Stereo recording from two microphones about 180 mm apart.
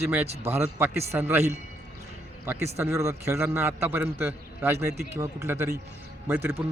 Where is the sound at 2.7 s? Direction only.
15° right (ahead or behind).